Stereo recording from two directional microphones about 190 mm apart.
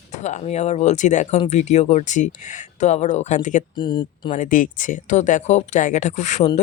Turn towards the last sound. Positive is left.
turn(degrees=40)  # may be behind; listen again after turning